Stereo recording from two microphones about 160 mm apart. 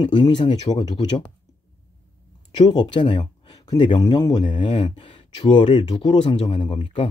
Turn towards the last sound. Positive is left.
turn(degrees=30)  # may be behind; listen again after turning